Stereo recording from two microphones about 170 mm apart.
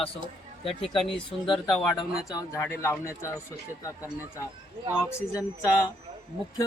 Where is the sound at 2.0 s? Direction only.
25° left (ahead or behind).